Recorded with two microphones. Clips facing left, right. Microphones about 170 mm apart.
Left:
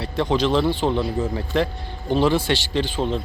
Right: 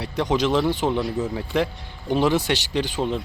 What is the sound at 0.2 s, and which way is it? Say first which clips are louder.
Speech: left 1 dB; 15° right (ahead or behind).